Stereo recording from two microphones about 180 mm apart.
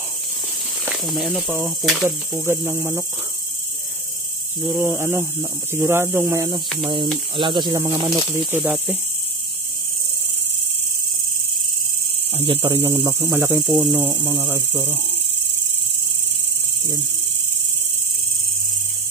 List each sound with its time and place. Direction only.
0.8 s speech: centre (ahead or behind)
2.0 s speech: 15° right (ahead or behind)
4.6 s speech: 10° right (ahead or behind)
6.8 s mains hum: 25° right (ahead or behind)
8.4 s speech: 10° right (ahead or behind)
8.6 s speech: centre (ahead or behind)
12.3 s mains hum: 30° right (ahead or behind)
13.2 s speech: 10° right (ahead or behind)